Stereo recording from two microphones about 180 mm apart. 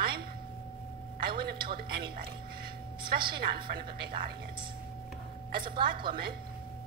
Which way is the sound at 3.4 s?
60° right (ahead or behind).